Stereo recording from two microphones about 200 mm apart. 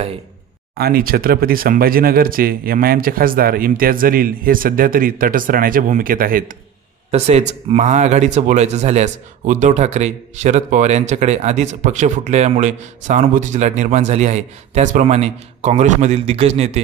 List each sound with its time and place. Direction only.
0.7 s speech: 50° right (ahead or behind)
7.1 s speech: 30° right (ahead or behind)